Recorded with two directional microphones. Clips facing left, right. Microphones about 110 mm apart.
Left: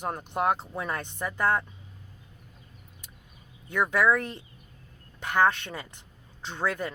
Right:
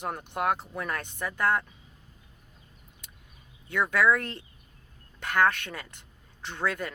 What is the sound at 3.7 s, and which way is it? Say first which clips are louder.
Speech: even; 15° left (ahead or behind).